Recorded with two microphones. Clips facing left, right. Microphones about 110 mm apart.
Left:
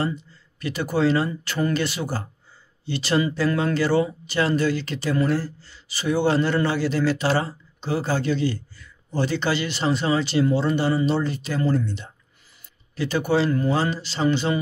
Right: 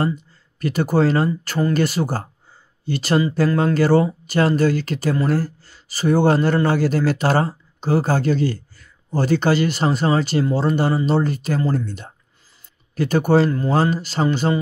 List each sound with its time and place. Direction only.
0.6 s a man's voice: 45° right (ahead or behind)